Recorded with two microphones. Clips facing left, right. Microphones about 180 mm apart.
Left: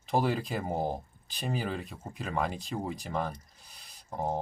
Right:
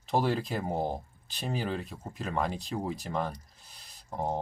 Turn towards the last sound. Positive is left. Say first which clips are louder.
# even
turn(degrees=0)  # may be behind; listen again after turning